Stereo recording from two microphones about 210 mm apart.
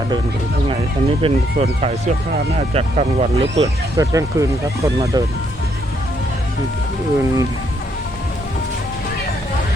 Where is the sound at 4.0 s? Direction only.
15° right (ahead or behind).